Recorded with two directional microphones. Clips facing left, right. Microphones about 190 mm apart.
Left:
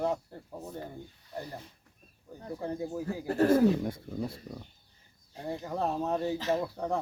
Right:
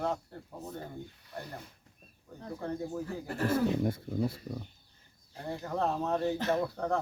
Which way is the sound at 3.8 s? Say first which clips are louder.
Right 3 dB; 5° right (ahead or behind).